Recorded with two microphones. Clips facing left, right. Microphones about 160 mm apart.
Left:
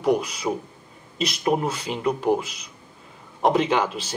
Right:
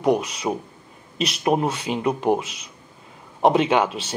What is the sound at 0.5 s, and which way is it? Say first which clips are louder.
Speech: right 2 dB; 20° right (ahead or behind).